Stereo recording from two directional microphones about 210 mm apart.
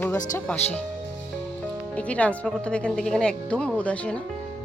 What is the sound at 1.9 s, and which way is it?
Speech, 5° left (ahead or behind).